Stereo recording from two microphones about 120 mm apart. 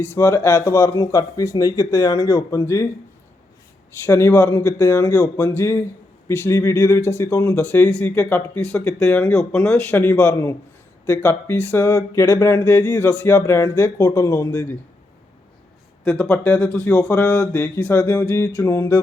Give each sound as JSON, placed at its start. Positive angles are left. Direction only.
{"t": 0.0, "sound": "speech", "side_deg": 20}
{"t": 4.0, "sound": "speech", "side_deg": 25}
{"t": 16.0, "sound": "speech", "side_deg": 5}